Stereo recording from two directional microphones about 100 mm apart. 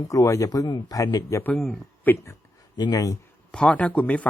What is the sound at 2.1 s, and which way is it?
Speech, 20° left (ahead or behind).